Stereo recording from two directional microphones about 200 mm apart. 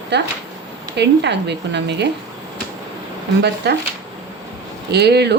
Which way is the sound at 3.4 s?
55° right (ahead or behind).